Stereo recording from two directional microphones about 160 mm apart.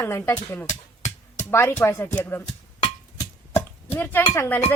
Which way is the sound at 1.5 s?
15° left (ahead or behind).